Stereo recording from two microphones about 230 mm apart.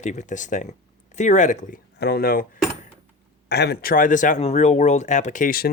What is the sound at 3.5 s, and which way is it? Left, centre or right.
Speech, left.